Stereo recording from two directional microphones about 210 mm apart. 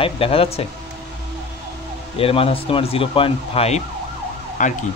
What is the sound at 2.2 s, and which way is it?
A man's voice, 25° left (ahead or behind).